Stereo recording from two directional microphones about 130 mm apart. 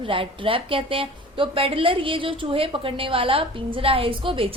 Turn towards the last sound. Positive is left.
turn(degrees=-45)  # may be behind; listen again after turning